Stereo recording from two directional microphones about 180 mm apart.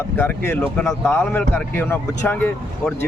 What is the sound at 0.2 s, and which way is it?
Speech, 10° left (ahead or behind).